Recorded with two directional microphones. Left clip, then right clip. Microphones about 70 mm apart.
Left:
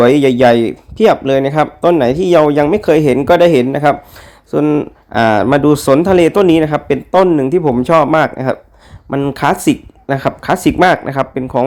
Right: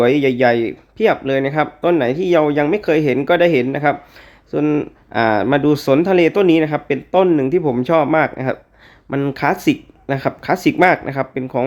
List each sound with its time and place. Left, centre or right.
0.0 s speech: left
1.6 s speech: left
2.0 s speech: left
4.6 s speech: centre
5.1 s speech: left
5.5 s speech: left
7.3 s a man's voice: centre; by 8.5 s left
9.0 s speech: centre
9.3 s speech: centre